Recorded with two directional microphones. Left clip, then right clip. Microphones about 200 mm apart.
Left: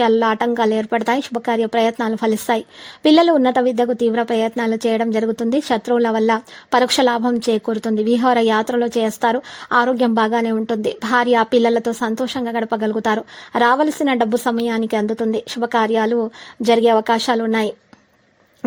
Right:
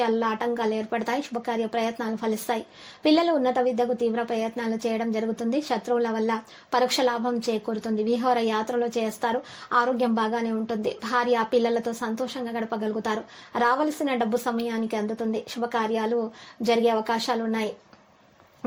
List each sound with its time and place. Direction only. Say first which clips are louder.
0.0 s a woman's voice: left 9 dB; 40° left (ahead or behind)